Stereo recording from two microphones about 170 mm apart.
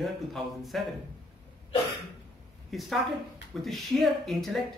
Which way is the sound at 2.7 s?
Centre (ahead or behind).